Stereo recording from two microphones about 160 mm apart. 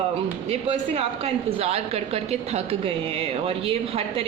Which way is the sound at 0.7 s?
40° right (ahead or behind).